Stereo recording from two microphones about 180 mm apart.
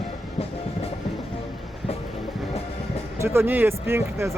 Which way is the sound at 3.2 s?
15° right (ahead or behind).